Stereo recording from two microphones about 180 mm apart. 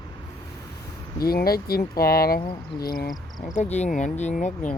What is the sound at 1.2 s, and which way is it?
Speech, 55° left (ahead or behind).